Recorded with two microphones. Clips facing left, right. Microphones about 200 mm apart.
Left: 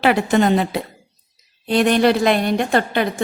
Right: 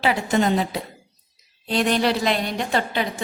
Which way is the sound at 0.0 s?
65° left (ahead or behind).